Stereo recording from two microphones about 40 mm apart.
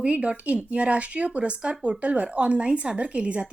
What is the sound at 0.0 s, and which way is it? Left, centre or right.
A woman's voice, right.